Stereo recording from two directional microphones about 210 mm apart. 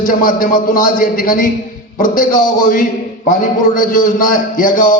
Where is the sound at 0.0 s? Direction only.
40° left (ahead or behind).